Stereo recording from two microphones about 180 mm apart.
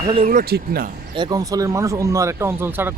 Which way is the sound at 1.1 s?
25° right (ahead or behind).